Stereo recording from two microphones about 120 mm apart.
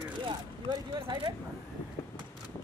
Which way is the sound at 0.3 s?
35° right (ahead or behind).